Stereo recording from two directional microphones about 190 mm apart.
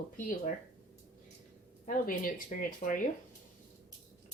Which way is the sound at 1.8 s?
45° left (ahead or behind).